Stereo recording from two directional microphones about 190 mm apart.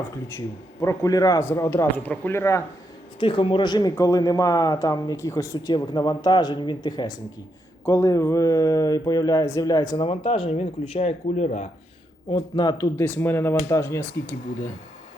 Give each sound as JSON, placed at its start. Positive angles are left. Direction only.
{"t": 0.3, "sound": "a man's voice", "side_deg": 15}
{"t": 3.2, "sound": "a man's voice", "side_deg": 25}
{"t": 10.1, "sound": "speech", "side_deg": 30}
{"t": 12.3, "sound": "a man's voice", "side_deg": 20}